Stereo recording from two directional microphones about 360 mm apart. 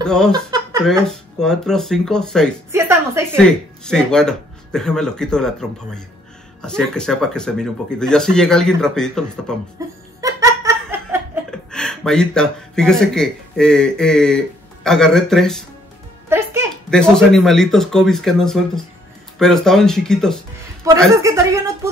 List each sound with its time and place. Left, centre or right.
0.0 s speech: centre
9.8 s laughter: centre
16.3 s speech: centre